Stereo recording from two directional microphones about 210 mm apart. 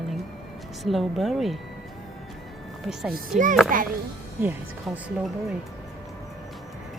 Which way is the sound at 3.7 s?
40° right (ahead or behind).